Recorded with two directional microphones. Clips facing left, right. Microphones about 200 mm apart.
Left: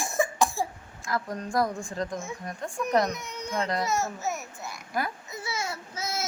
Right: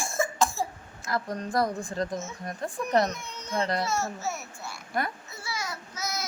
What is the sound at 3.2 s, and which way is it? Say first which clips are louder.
Baby cry: left 4 dB; 15° left (ahead or behind).